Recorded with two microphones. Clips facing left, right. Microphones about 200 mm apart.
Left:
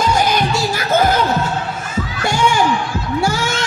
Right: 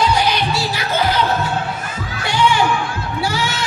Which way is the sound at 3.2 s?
45° left (ahead or behind).